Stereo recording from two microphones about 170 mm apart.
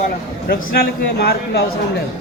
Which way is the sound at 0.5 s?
65° left (ahead or behind).